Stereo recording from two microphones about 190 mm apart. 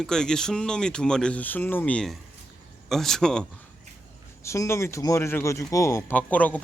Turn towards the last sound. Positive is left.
turn(degrees=10)  # may be behind; listen again after turning